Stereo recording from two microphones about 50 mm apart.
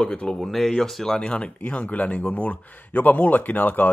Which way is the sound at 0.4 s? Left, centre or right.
Centre.